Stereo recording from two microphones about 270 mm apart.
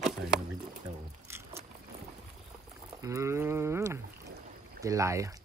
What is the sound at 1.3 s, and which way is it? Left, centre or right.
Vehicle, centre.